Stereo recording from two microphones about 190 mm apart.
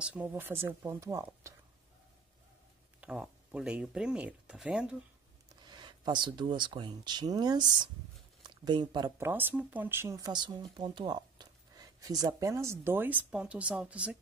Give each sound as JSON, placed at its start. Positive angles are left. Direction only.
{"t": 0.0, "sound": "speech", "side_deg": -10}
{"t": 3.0, "sound": "speech", "side_deg": -5}
{"t": 5.7, "sound": "speech", "side_deg": -25}
{"t": 9.3, "sound": "speech", "side_deg": -10}